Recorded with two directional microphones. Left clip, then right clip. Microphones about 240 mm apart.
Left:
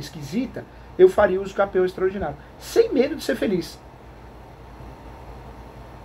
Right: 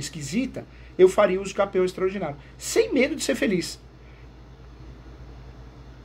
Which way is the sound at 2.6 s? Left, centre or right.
Right.